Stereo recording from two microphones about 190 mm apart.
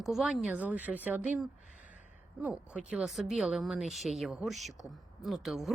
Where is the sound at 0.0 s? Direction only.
Centre (ahead or behind).